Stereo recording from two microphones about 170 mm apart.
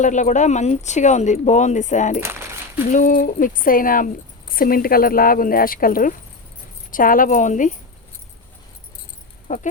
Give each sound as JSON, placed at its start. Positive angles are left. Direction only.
{"t": 0.0, "sound": "speech", "side_deg": 45}
{"t": 2.2, "sound": "coin", "side_deg": -15}
{"t": 2.9, "sound": "a woman's voice", "side_deg": 50}
{"t": 9.5, "sound": "speech", "side_deg": 50}